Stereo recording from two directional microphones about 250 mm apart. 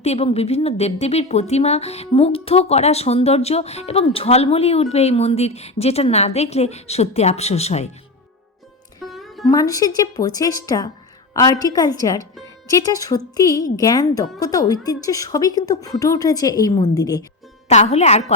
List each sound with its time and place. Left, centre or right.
0.0 s a woman's voice: left
9.1 s music: centre
9.5 s a woman's voice: centre
17.7 s a woman's voice: left